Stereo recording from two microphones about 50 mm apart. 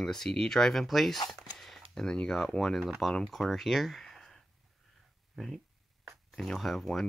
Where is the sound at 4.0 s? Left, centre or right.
Centre.